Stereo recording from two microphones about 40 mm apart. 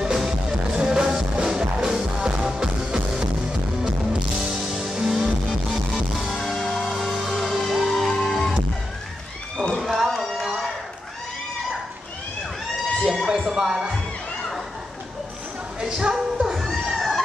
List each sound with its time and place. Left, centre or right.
0.0 s music: centre
1.8 s music: centre
4.4 s music: centre
6.5 s music: centre
9.8 s a sound: centre
13.0 s a sound: centre
13.5 s music: centre
15.8 s music: centre
16.5 s a sound: centre